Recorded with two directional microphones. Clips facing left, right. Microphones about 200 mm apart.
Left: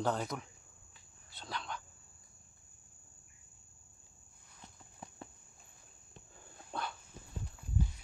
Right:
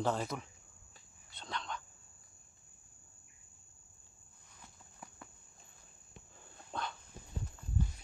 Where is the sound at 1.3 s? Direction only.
5° left (ahead or behind).